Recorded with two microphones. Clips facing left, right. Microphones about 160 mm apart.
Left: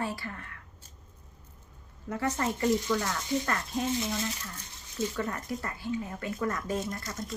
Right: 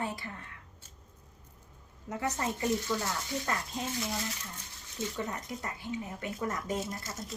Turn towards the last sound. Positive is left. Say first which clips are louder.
# left 3 dB
turn(degrees=-5)  # may be behind; listen again after turning